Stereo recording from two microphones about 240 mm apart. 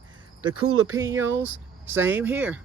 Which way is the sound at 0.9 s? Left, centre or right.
Centre.